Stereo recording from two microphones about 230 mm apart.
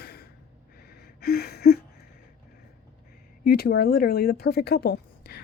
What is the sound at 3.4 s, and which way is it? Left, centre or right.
Speech, left.